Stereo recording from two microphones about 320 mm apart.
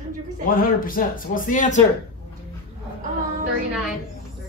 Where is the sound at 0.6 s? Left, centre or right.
Left.